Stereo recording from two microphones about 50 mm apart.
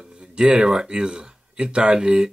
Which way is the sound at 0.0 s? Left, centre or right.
Centre.